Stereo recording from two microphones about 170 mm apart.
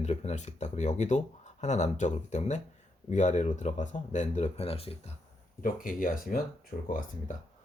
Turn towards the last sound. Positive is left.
turn(degrees=55)  # may be behind; listen again after turning